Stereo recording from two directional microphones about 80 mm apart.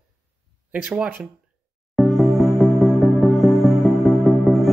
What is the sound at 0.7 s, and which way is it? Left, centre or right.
Speech, centre.